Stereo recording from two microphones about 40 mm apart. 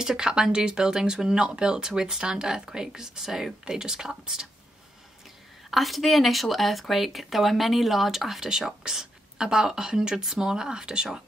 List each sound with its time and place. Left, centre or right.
0.0 s speech: centre
5.7 s speech: centre